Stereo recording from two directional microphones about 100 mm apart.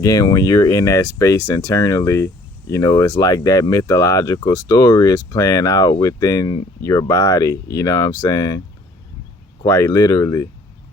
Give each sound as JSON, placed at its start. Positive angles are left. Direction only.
{"t": 0.0, "sound": "speech", "side_deg": 40}
{"t": 9.6, "sound": "speech", "side_deg": 35}